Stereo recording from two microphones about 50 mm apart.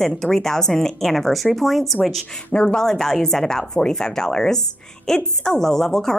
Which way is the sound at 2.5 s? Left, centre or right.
Centre.